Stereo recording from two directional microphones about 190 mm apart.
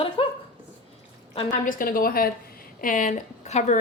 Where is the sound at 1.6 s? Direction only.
45° left (ahead or behind).